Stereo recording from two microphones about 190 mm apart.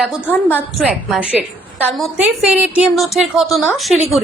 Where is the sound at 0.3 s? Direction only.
10° left (ahead or behind).